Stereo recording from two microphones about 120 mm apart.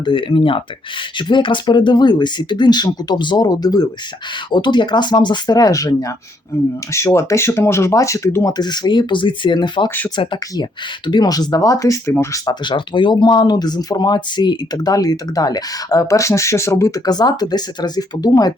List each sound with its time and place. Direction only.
0.0 s speech: 40° left (ahead or behind); by 8.5 s 25° left (ahead or behind)
8.5 s speech: 35° left (ahead or behind)
12.5 s speech: 40° left (ahead or behind)